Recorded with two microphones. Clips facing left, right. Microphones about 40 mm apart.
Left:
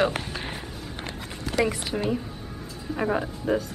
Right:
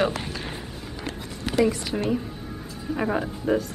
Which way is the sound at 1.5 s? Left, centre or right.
Right.